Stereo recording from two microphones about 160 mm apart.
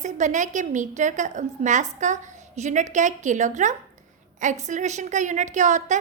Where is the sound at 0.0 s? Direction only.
50° right (ahead or behind).